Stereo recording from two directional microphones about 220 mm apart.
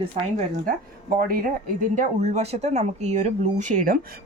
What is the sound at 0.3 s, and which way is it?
Speech, 40° right (ahead or behind).